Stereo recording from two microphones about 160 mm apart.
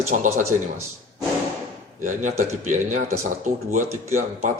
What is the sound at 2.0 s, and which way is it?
Speech, 50° right (ahead or behind).